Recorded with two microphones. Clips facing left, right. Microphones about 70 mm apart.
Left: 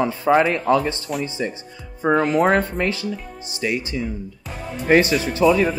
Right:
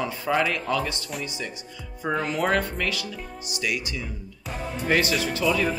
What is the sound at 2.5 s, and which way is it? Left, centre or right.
Speech, left.